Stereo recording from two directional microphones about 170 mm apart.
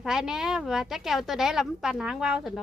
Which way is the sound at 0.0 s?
Centre (ahead or behind).